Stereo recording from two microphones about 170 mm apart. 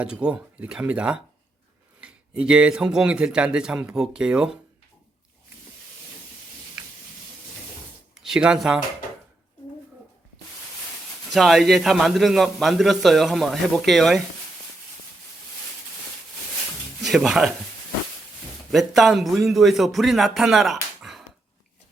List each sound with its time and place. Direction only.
0.0 s a man's voice: 5° right (ahead or behind)
8.2 s a man's voice: 5° right (ahead or behind)
11.3 s a man's voice: centre (ahead or behind)
17.0 s speech: centre (ahead or behind)
18.7 s a man's voice: centre (ahead or behind)